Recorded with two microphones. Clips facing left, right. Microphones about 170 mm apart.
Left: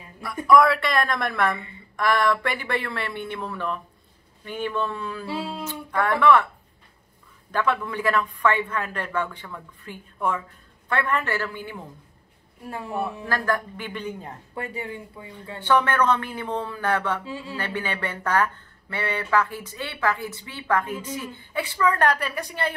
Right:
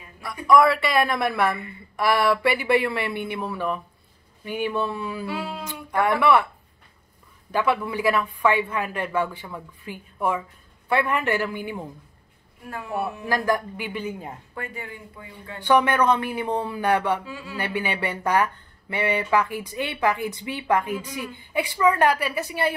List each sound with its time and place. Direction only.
0.5 s speech: centre (ahead or behind)
5.2 s speech: 30° left (ahead or behind)
5.7 s speech: 10° right (ahead or behind)
7.5 s speech: 10° right (ahead or behind)
12.6 s speech: 30° left (ahead or behind)
12.9 s speech: 5° right (ahead or behind)
14.5 s speech: 30° left (ahead or behind)
15.6 s speech: 15° right (ahead or behind)
17.2 s speech: 30° left (ahead or behind)
17.6 s speech: 10° right (ahead or behind)